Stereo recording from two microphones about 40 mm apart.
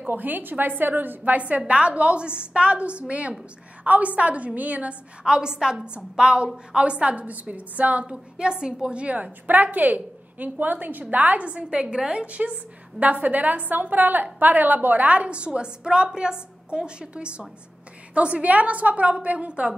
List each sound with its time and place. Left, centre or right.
0.0 s a woman's voice: right
5.2 s a woman's voice: right
8.0 s a woman's voice: right
11.4 s a woman's voice: right